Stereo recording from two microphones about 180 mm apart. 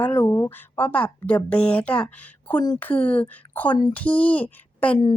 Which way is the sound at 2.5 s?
20° left (ahead or behind).